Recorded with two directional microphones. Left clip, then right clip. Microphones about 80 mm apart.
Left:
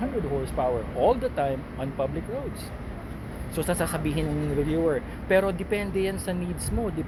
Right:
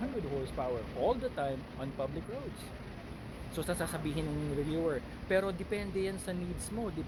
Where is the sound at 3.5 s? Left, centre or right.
Centre.